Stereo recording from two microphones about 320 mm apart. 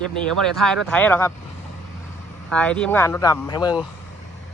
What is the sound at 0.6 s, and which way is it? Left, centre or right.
Speech, centre.